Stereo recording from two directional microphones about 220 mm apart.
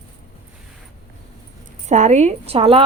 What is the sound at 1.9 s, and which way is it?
Speech, 30° right (ahead or behind).